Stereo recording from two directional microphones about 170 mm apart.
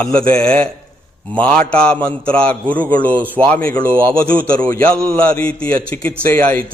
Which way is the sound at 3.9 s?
15° right (ahead or behind).